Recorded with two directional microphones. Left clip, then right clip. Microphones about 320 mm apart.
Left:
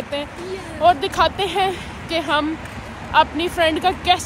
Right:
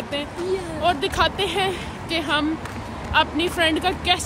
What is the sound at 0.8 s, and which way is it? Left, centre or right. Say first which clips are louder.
Speech: left 5 dB; centre.